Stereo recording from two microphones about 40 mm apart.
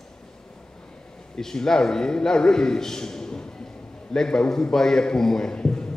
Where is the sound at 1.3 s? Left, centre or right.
Centre.